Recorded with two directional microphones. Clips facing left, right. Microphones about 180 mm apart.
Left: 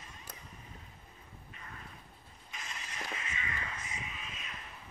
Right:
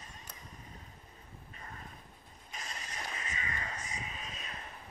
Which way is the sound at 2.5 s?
35° right (ahead or behind).